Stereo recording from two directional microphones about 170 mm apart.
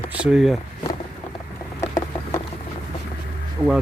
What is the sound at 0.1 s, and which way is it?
Speech, 5° right (ahead or behind).